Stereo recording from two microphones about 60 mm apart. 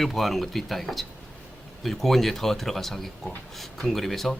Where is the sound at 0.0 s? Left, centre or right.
Centre.